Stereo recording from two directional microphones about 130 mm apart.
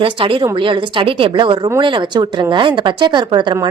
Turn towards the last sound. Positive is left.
turn(degrees=-35)  # may be behind; listen again after turning